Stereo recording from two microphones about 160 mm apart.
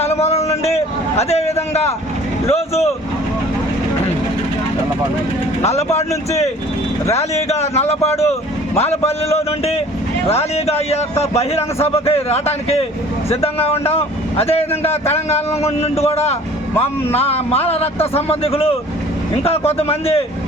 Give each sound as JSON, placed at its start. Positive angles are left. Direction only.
{"t": 0.0, "sound": "a sound", "side_deg": 40}
{"t": 1.2, "sound": "a man's voice", "side_deg": 40}
{"t": 5.6, "sound": "a man's voice", "side_deg": 45}